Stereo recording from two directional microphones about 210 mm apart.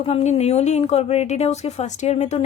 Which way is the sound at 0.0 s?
30° left (ahead or behind).